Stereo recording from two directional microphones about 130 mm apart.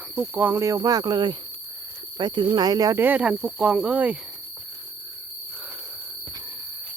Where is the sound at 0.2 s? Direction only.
15° right (ahead or behind).